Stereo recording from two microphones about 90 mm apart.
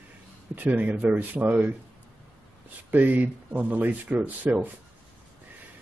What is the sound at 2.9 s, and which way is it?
Speech, 20° right (ahead or behind).